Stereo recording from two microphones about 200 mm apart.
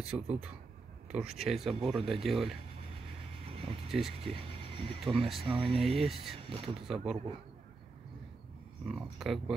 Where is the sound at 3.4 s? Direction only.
30° right (ahead or behind).